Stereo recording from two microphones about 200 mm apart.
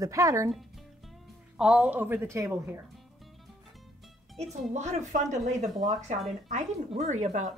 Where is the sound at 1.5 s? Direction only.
5° right (ahead or behind).